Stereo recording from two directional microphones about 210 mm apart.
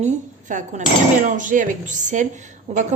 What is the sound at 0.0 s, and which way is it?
A woman's voice, 35° right (ahead or behind).